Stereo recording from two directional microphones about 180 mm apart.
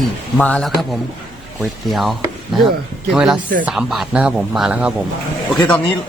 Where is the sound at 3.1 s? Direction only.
5° right (ahead or behind).